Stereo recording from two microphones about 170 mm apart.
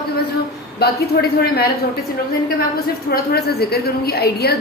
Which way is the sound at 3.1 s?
65° left (ahead or behind).